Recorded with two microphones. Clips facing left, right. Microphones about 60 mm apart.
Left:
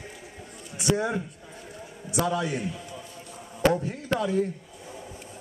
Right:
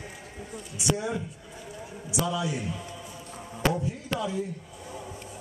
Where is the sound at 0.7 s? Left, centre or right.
Left.